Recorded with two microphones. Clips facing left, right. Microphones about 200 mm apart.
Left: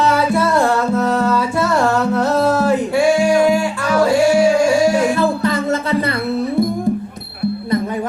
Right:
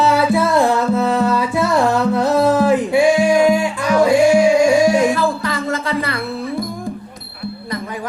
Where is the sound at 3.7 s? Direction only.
15° right (ahead or behind).